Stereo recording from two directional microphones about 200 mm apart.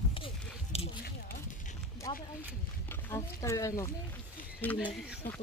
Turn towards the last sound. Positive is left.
turn(degrees=10)  # may be behind; listen again after turning